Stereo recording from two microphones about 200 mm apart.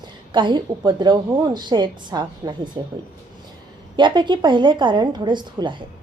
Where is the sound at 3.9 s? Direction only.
25° right (ahead or behind).